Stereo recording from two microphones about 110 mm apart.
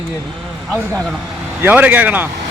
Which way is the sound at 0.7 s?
25° right (ahead or behind).